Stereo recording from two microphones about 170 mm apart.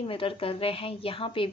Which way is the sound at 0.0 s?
30° left (ahead or behind).